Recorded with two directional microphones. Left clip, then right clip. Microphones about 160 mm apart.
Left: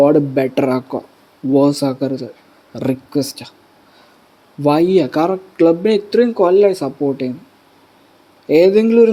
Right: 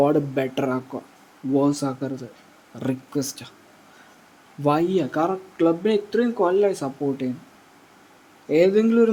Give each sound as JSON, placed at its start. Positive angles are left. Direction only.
{"t": 0.0, "sound": "speech", "side_deg": 30}
{"t": 4.6, "sound": "speech", "side_deg": 25}
{"t": 8.4, "sound": "speech", "side_deg": 30}